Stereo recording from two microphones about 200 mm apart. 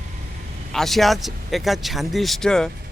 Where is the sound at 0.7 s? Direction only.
Centre (ahead or behind).